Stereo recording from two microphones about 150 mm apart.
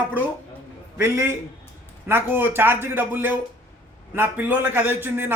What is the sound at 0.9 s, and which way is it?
Speech, 15° right (ahead or behind).